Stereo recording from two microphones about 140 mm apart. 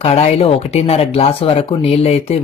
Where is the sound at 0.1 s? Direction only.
45° left (ahead or behind).